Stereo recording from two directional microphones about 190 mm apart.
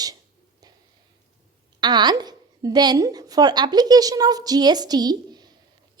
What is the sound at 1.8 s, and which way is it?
A woman's voice, 25° right (ahead or behind).